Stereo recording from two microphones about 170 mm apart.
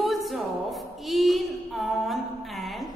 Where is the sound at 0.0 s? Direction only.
Centre (ahead or behind).